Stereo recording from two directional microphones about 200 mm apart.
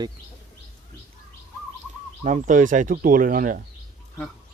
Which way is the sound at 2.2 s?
40° right (ahead or behind).